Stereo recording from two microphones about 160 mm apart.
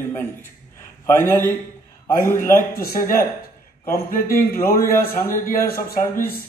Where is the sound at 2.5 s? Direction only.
60° left (ahead or behind).